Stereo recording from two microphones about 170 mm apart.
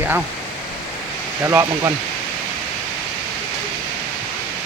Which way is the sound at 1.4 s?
15° right (ahead or behind).